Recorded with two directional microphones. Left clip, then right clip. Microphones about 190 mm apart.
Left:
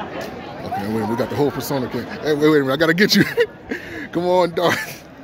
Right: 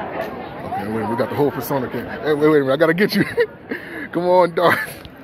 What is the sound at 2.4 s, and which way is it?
Speech, 30° left (ahead or behind).